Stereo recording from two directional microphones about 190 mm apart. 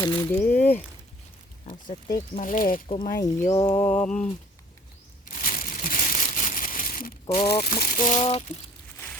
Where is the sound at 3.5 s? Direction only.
15° left (ahead or behind).